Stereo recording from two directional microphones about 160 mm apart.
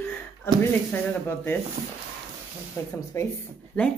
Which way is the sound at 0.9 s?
15° left (ahead or behind).